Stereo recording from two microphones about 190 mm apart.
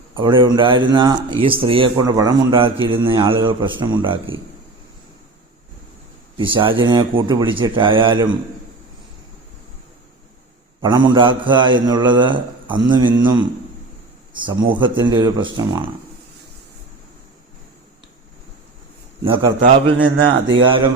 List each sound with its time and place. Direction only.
0.2 s speech: 25° right (ahead or behind)
6.3 s speech: 25° right (ahead or behind)
10.8 s speech: 25° right (ahead or behind)
19.2 s speech: 25° right (ahead or behind)